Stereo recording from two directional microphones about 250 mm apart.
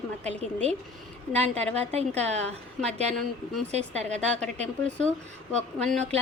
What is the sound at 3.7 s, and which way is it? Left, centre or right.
A woman's voice, right.